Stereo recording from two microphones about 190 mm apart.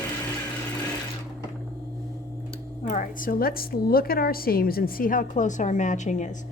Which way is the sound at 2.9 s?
45° left (ahead or behind).